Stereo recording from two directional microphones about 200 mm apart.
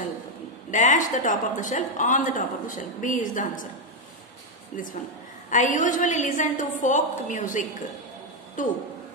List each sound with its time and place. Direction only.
0.7 s speech: 40° left (ahead or behind)
5.5 s speech: 40° left (ahead or behind)